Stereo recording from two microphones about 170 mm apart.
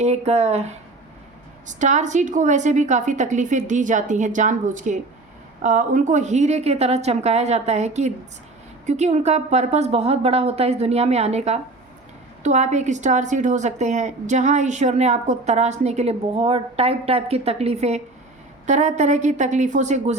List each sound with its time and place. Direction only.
0.0 s a woman's voice: 40° right (ahead or behind)
1.6 s a woman's voice: 45° right (ahead or behind)